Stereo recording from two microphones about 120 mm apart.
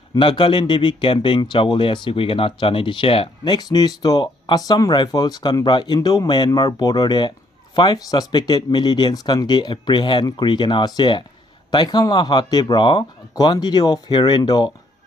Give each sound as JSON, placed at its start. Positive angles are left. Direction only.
{"t": 0.1, "sound": "speech", "side_deg": 45}
{"t": 3.5, "sound": "speech", "side_deg": 35}